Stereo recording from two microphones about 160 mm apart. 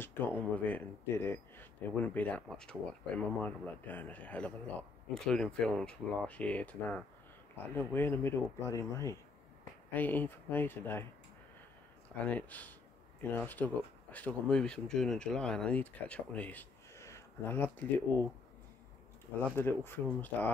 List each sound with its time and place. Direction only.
0.0 s speech: 10° left (ahead or behind)
12.3 s speech: 10° left (ahead or behind)
19.5 s speech: 15° left (ahead or behind)